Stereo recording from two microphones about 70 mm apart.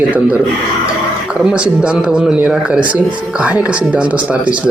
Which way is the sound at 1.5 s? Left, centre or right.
Centre.